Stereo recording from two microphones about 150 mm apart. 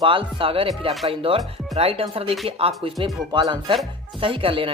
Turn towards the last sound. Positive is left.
turn(degrees=-35)  # may be behind; listen again after turning